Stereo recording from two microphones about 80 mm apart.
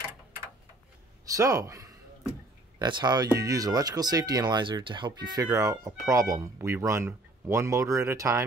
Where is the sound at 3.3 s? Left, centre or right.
Right.